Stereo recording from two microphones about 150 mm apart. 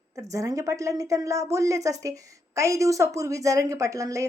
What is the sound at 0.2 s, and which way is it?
A woman's voice, 20° right (ahead or behind).